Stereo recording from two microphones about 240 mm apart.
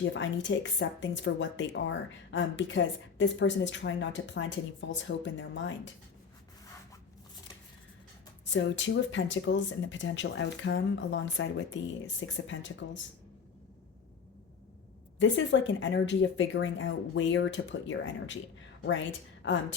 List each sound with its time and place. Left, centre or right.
0.1 s speech: left
8.4 s speech: left
15.2 s a woman's voice: left